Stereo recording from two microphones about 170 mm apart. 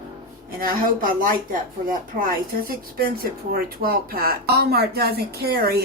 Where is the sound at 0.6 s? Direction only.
55° right (ahead or behind).